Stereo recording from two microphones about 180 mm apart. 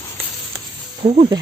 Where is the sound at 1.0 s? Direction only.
30° right (ahead or behind).